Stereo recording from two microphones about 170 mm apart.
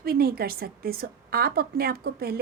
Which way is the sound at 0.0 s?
65° right (ahead or behind).